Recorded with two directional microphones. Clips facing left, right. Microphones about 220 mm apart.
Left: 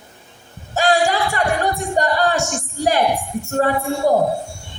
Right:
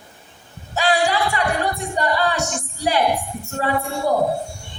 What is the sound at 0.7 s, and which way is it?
Music, 45° left (ahead or behind).